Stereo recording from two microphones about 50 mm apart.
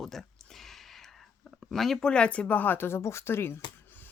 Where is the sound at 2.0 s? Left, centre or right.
Left.